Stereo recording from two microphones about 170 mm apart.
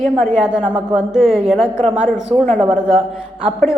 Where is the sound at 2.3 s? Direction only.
30° right (ahead or behind).